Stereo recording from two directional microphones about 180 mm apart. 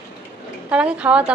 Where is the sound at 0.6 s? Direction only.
5° right (ahead or behind).